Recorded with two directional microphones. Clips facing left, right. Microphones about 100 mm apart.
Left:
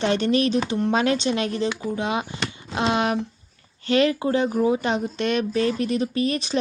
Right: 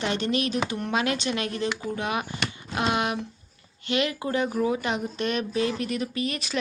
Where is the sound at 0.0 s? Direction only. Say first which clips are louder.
Left 6 dB; 35° left (ahead or behind).